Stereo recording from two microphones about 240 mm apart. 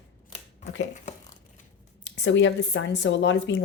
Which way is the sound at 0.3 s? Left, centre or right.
Left.